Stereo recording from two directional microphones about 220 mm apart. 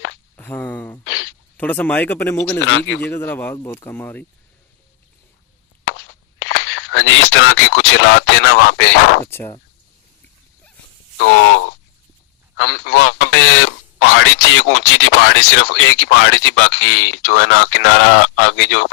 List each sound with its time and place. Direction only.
0.3 s speech: 5° left (ahead or behind)
1.0 s a sound: 65° left (ahead or behind)
1.5 s speech: 5° left (ahead or behind)
2.6 s speech: 60° left (ahead or behind)
3.0 s speech: 10° left (ahead or behind)
5.9 s a sound: 65° left (ahead or behind)
9.2 s speech: 10° left (ahead or behind)
12.5 s a man's voice: 45° left (ahead or behind)
13.0 s speech: 65° left (ahead or behind)